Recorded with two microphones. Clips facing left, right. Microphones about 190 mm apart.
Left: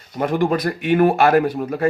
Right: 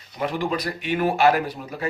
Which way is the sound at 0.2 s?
50° left (ahead or behind).